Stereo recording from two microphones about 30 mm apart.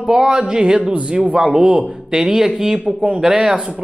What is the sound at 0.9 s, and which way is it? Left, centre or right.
Speech, right.